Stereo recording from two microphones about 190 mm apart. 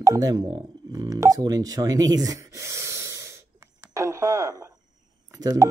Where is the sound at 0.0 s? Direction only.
20° right (ahead or behind).